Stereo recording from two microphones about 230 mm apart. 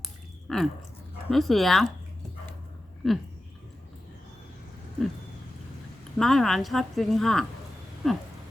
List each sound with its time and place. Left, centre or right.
0.4 s a woman's voice: centre
3.0 s a woman's voice: centre
6.1 s a woman's voice: centre